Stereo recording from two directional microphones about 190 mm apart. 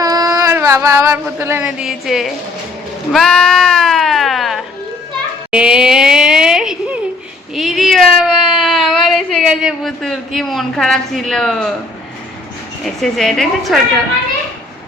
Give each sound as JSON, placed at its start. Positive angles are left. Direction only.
{"t": 0.0, "sound": "speech", "side_deg": -20}
{"t": 3.1, "sound": "sheep", "side_deg": 5}
{"t": 5.5, "sound": "a sound", "side_deg": -5}
{"t": 12.8, "sound": "a woman's voice", "side_deg": 0}